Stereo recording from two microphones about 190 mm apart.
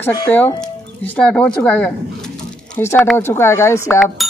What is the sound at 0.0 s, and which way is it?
Speech, 10° left (ahead or behind).